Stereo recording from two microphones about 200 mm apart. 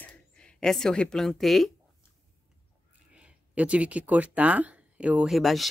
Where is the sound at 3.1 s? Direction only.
5° right (ahead or behind).